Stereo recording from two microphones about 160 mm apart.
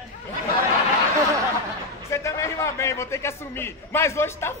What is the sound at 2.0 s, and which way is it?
A man's voice, 20° left (ahead or behind).